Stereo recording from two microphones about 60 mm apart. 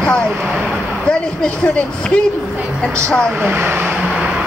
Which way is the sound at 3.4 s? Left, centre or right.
Right.